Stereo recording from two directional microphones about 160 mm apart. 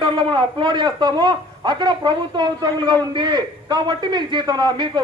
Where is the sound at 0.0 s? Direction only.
30° right (ahead or behind).